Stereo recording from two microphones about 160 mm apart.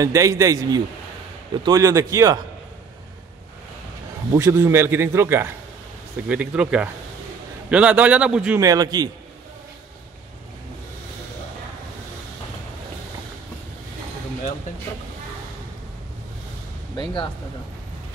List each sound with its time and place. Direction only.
0.0 s a man's voice: 20° right (ahead or behind)
4.4 s a man's voice: 15° right (ahead or behind)
8.5 s a man's voice: 20° right (ahead or behind)
16.9 s speech: 30° left (ahead or behind)